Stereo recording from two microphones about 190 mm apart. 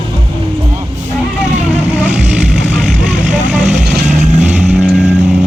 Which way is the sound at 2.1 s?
Centre (ahead or behind).